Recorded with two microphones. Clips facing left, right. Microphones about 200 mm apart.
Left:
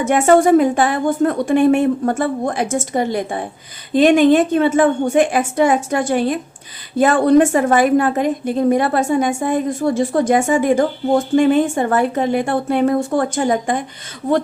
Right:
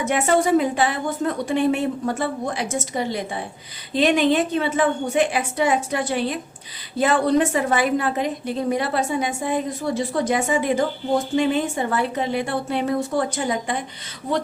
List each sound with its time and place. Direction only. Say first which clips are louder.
0.0 s a woman's voice: left 7 dB; 50° left (ahead or behind)